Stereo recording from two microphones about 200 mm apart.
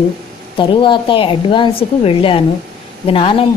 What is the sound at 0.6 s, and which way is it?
A woman's voice, 25° left (ahead or behind).